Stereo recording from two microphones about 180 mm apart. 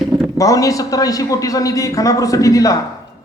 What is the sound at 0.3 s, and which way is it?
A man's voice, 20° left (ahead or behind).